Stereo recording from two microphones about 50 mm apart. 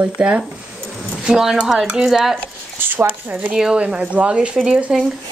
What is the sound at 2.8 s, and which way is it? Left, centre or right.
Speech, right.